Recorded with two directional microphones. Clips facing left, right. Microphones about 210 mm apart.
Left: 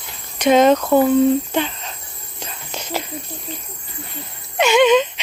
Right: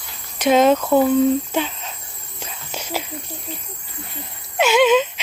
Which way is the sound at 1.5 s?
5° right (ahead or behind).